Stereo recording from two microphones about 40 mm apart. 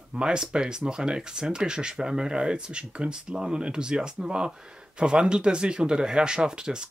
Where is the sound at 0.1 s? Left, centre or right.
Right.